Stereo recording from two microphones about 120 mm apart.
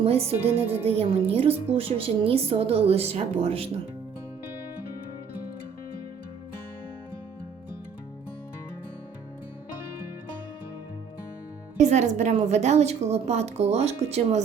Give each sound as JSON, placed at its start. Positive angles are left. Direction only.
{"t": 0.0, "sound": "a woman's voice", "side_deg": -55}
{"t": 11.8, "sound": "a woman's voice", "side_deg": -75}